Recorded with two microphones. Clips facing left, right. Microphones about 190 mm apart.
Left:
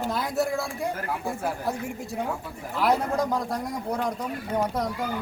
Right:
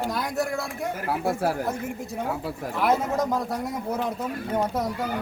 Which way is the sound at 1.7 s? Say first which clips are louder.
Even; centre (ahead or behind).